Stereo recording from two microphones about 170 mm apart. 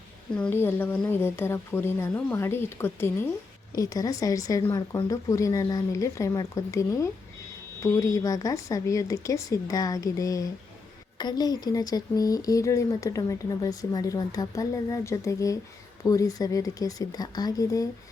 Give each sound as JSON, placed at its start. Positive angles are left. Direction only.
{"t": 0.3, "sound": "speech", "side_deg": 10}